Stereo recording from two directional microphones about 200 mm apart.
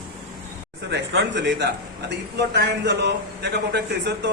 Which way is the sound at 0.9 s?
60° right (ahead or behind).